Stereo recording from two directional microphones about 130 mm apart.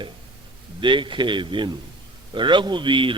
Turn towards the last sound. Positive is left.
turn(degrees=-40)  # may be behind; listen again after turning